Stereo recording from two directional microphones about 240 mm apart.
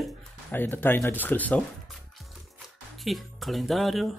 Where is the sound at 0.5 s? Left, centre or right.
Centre.